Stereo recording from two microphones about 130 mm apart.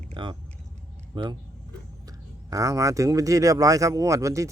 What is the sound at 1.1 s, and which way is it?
Speech, 40° right (ahead or behind).